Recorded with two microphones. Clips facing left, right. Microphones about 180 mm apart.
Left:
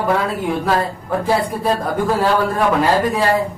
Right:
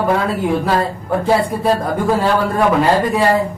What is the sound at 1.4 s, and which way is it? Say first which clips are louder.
Speech: right 3 dB; centre (ahead or behind).